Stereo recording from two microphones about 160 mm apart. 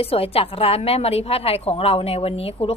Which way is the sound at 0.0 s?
35° left (ahead or behind).